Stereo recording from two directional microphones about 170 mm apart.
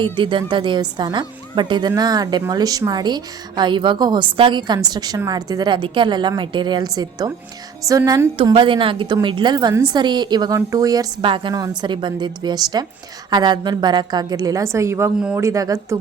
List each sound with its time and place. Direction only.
0.0 s a woman's voice: 30° right (ahead or behind)